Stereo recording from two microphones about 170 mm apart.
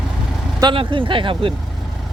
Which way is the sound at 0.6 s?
30° right (ahead or behind).